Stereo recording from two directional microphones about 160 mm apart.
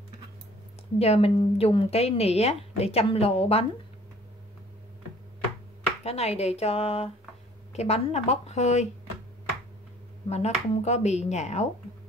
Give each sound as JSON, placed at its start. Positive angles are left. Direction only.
{"t": 0.9, "sound": "speech", "side_deg": 40}
{"t": 6.0, "sound": "speech", "side_deg": 40}
{"t": 10.3, "sound": "speech", "side_deg": 45}